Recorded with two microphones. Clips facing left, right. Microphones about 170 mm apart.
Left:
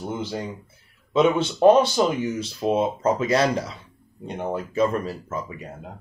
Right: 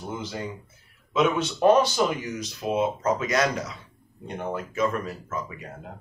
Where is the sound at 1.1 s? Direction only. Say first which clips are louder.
Left 4 dB; 25° left (ahead or behind).